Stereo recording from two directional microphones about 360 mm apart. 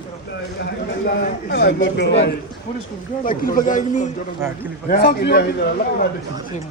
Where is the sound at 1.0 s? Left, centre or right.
Left.